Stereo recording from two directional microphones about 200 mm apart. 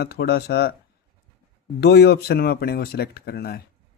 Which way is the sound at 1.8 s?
55° left (ahead or behind).